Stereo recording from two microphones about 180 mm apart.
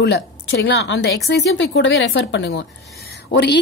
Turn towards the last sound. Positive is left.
turn(degrees=70)  # may be behind; listen again after turning